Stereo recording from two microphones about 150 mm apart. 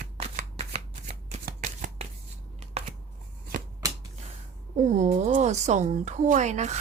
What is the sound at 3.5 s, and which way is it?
Shuffling cards, 65° right (ahead or behind).